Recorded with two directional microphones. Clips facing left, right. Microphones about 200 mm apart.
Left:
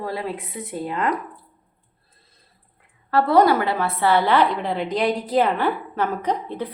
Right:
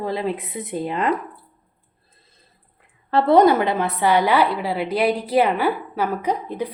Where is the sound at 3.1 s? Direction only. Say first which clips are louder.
Right 2 dB; 25° right (ahead or behind).